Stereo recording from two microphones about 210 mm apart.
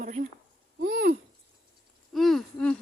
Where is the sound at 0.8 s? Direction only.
45° right (ahead or behind).